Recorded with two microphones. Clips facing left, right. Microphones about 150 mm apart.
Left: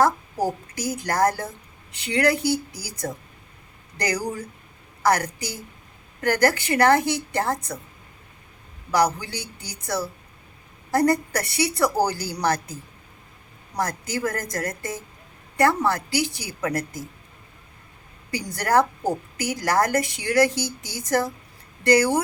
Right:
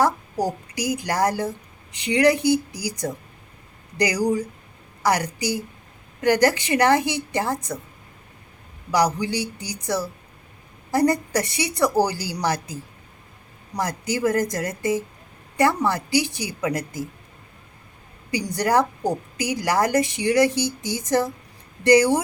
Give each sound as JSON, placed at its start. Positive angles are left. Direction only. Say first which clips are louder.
{"t": 0.0, "sound": "a woman's voice", "louder": "even", "side_deg": -15}
{"t": 3.9, "sound": "a woman's voice", "louder": "right 6 dB", "side_deg": -15}
{"t": 8.9, "sound": "a woman's voice", "louder": "right 1 dB", "side_deg": -15}
{"t": 18.3, "sound": "a woman's voice", "louder": "right 2 dB", "side_deg": -15}